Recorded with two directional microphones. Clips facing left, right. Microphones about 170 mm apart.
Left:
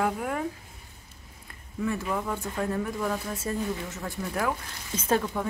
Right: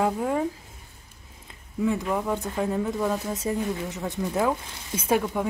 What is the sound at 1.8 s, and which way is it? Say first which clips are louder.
Speech: right 4 dB; 20° right (ahead or behind).